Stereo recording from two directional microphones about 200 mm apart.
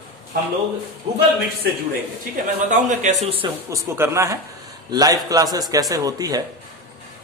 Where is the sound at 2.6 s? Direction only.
40° right (ahead or behind).